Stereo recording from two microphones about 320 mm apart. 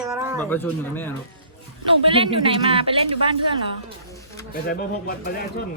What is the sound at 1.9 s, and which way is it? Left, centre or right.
A woman's voice, centre.